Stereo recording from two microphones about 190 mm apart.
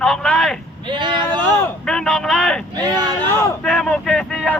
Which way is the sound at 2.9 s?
20° right (ahead or behind).